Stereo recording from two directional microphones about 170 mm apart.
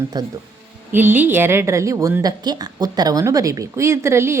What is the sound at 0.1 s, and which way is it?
Speech, 25° right (ahead or behind).